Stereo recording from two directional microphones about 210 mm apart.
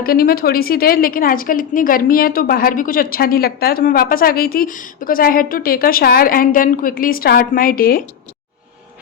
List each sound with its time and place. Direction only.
0.0 s a woman's voice: 45° left (ahead or behind)